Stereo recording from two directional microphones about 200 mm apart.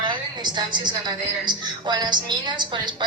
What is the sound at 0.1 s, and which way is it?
A woman's voice, 20° right (ahead or behind).